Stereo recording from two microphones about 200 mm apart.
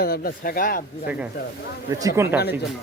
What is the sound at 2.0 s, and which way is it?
Speech, 15° right (ahead or behind).